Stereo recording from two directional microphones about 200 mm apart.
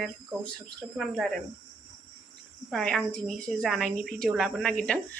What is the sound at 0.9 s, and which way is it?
Speech, centre (ahead or behind).